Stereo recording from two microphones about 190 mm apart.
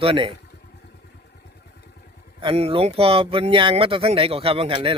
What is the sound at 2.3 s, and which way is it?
Speech, 30° right (ahead or behind).